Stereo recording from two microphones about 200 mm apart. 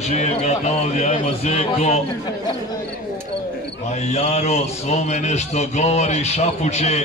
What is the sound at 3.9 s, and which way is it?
Speech, 35° left (ahead or behind).